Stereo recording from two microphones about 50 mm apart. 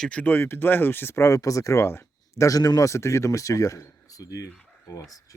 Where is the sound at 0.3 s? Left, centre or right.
Left.